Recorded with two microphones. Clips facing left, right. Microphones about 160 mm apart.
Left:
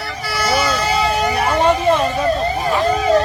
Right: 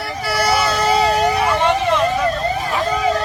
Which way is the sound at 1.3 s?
40° left (ahead or behind).